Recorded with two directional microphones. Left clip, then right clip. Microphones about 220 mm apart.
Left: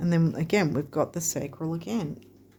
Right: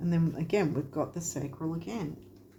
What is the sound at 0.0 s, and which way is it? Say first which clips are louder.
Speech: left 5 dB; 50° left (ahead or behind).